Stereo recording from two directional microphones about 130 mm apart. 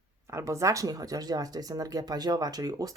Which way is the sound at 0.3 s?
25° right (ahead or behind).